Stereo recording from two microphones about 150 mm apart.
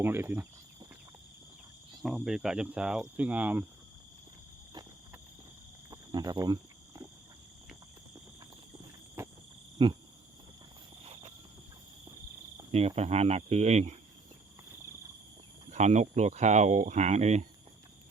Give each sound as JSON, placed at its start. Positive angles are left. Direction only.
{"t": 0.0, "sound": "cricket", "side_deg": -15}
{"t": 2.0, "sound": "speech", "side_deg": 0}
{"t": 3.0, "sound": "cricket", "side_deg": -10}
{"t": 5.9, "sound": "cricket", "side_deg": -25}
{"t": 9.2, "sound": "cricket", "side_deg": -15}
{"t": 9.8, "sound": "cricket", "side_deg": -35}
{"t": 11.0, "sound": "a sound", "side_deg": -40}
{"t": 12.7, "sound": "speech", "side_deg": -45}
{"t": 15.7, "sound": "speech", "side_deg": -50}